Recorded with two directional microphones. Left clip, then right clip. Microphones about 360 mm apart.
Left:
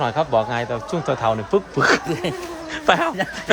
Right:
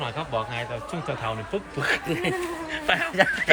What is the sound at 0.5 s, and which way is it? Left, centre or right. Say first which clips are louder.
Speech: left 7 dB; left.